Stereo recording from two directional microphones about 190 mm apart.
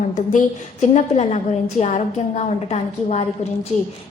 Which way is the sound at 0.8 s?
35° left (ahead or behind).